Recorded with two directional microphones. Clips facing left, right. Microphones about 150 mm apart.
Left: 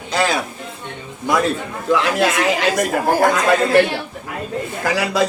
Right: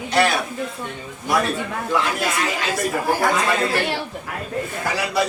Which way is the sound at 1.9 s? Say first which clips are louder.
Left 6 dB; 90° left.